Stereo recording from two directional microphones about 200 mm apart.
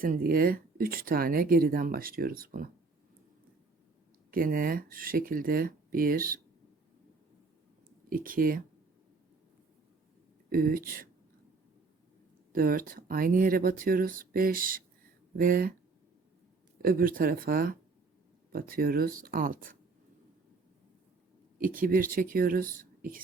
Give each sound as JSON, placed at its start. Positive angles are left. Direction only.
{"t": 0.0, "sound": "speech", "side_deg": -45}
{"t": 4.3, "sound": "speech", "side_deg": -45}
{"t": 8.1, "sound": "speech", "side_deg": -45}
{"t": 10.5, "sound": "speech", "side_deg": -45}
{"t": 12.5, "sound": "speech", "side_deg": -45}
{"t": 16.8, "sound": "speech", "side_deg": -45}
{"t": 21.6, "sound": "speech", "side_deg": -45}